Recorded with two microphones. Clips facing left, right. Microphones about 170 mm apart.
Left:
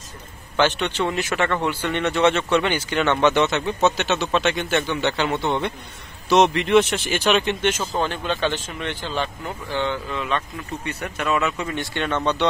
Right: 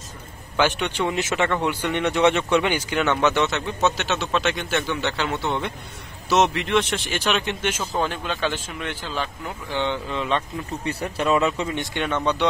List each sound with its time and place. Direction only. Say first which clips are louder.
0.6 s speech: left 1 dB; 10° right (ahead or behind)
9.7 s speech: even; 20° right (ahead or behind)
10.1 s speech: right 1 dB; 30° right (ahead or behind)